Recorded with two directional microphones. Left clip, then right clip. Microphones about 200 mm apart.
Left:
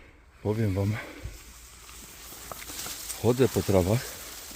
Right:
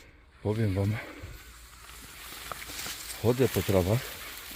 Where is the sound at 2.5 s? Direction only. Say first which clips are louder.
Right 1 dB; 5° right (ahead or behind).